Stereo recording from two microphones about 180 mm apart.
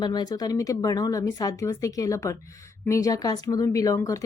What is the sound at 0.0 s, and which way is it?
A woman's voice, 25° left (ahead or behind).